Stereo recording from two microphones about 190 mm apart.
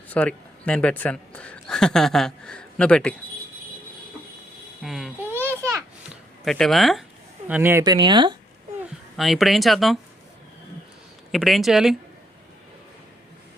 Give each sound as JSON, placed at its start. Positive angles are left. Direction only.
{"t": 0.1, "sound": "a man's voice", "side_deg": 10}
{"t": 4.8, "sound": "a sound", "side_deg": 0}
{"t": 6.4, "sound": "speech", "side_deg": 0}
{"t": 7.9, "sound": "speech", "side_deg": -25}
{"t": 9.1, "sound": "speech", "side_deg": 0}
{"t": 11.3, "sound": "speech", "side_deg": 0}